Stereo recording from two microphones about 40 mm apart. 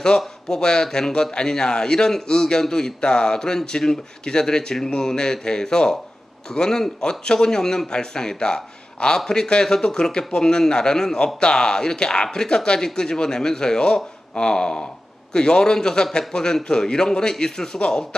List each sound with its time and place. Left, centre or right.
0.5 s a man's voice: centre